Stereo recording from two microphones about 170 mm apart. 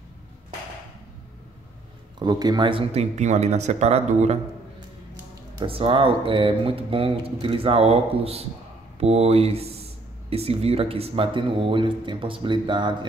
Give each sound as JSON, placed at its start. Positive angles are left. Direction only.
{"t": 2.1, "sound": "speech", "side_deg": -25}
{"t": 5.7, "sound": "speech", "side_deg": -30}